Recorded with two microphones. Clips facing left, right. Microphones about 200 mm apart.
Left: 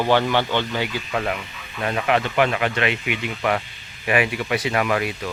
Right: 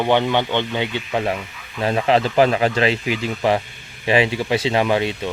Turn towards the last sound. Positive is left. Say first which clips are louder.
# right 3 dB
turn(degrees=-25)  # may be behind; listen again after turning